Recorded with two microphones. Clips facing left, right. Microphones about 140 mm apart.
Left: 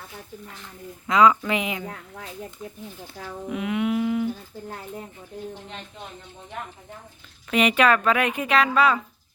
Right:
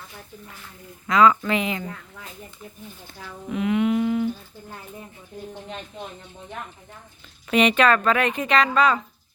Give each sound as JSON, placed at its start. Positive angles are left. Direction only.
{"t": 1.0, "sound": "a woman's voice", "side_deg": 20}
{"t": 3.5, "sound": "humming", "side_deg": 5}
{"t": 7.5, "sound": "a woman's voice", "side_deg": 5}